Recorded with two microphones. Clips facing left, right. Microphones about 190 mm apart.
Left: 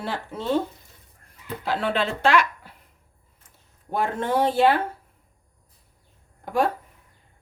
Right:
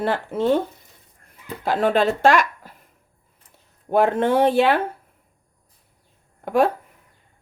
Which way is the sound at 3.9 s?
60° right (ahead or behind).